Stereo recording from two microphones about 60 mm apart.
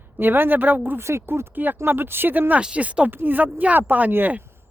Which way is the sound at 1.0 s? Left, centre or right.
Right.